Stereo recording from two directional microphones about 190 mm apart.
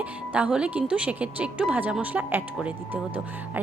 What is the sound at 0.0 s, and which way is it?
A woman's voice, 5° right (ahead or behind).